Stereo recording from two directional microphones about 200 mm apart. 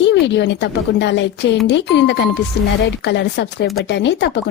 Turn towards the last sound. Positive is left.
turn(degrees=60)  # may be behind; listen again after turning